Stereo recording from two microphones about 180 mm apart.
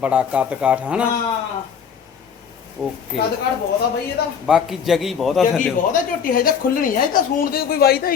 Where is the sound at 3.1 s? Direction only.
Centre (ahead or behind).